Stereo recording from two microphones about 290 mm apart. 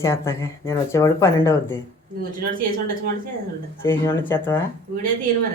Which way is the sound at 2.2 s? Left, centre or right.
Right.